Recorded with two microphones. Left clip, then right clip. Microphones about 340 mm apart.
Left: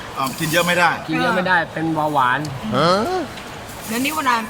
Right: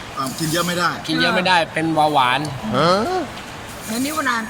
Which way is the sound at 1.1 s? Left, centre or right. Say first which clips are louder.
Right 1 dB; centre.